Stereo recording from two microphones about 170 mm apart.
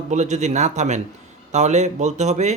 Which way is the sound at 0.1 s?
40° right (ahead or behind).